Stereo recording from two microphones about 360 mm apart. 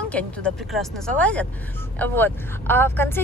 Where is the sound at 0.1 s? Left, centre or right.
Centre.